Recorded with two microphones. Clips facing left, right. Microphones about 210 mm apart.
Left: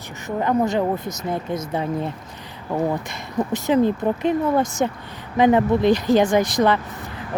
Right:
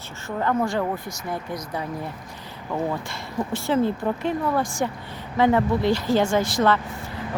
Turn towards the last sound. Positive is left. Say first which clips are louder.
# left 2 dB
turn(degrees=15)  # may be behind; listen again after turning